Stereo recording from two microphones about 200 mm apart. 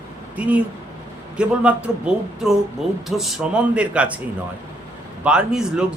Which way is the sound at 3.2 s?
Centre (ahead or behind).